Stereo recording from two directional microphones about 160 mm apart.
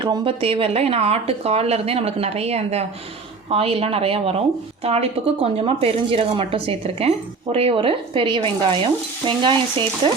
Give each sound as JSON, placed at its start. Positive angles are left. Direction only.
{"t": 0.0, "sound": "speech", "side_deg": -30}